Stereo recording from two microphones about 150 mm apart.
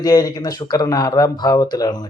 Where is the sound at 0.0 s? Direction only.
25° left (ahead or behind).